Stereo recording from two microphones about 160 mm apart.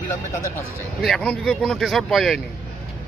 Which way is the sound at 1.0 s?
5° left (ahead or behind).